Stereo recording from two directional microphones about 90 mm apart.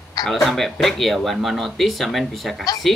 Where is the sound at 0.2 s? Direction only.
Centre (ahead or behind).